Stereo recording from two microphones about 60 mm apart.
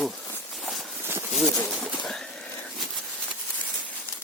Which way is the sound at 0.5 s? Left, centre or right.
Centre.